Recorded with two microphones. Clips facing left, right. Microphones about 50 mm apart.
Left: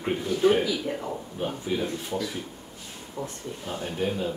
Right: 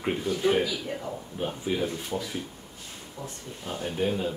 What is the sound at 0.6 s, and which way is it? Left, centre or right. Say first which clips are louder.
Speech: left 3 dB; left.